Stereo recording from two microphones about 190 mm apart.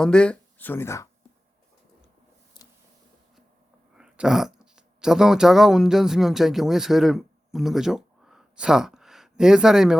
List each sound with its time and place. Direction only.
0.0 s speech: 5° left (ahead or behind)
2.5 s a sound: 25° left (ahead or behind)
3.9 s speech: 5° right (ahead or behind)